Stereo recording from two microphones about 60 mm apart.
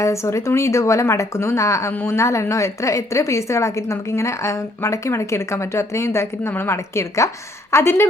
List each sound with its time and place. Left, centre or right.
0.0 s a woman's voice: left